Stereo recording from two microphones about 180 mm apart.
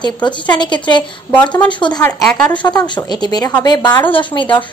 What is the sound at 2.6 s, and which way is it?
A woman's voice, 25° left (ahead or behind).